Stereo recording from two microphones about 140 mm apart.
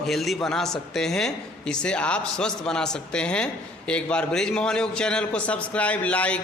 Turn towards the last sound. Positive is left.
turn(degrees=10)  # may be behind; listen again after turning